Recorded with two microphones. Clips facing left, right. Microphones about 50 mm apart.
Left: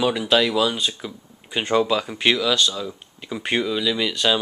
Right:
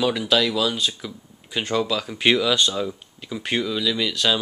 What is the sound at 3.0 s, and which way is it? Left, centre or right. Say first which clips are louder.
Speech: left 1 dB; centre.